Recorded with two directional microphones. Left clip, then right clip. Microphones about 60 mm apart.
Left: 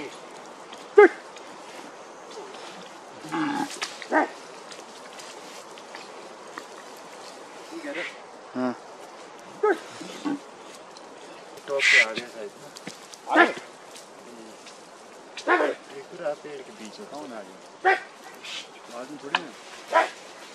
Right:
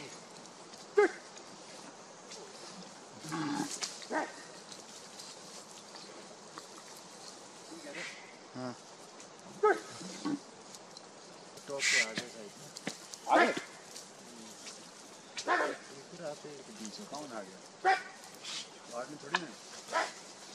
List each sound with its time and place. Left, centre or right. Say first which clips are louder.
1.0 s dog: left 13 dB; left
3.3 s livestock: left 10 dB; centre
3.5 s livestock: left 8 dB; left
8.6 s bird: left 14 dB; left
9.6 s dog: left 5 dB; centre
9.9 s a sound: left 8 dB; left
11.6 s a sound: left 12 dB; left
13.3 s a sound: left 7 dB; centre
15.3 s dog: left 9 dB; centre
17.1 s dog: left 5 dB; centre
19.9 s dog: left 12 dB; left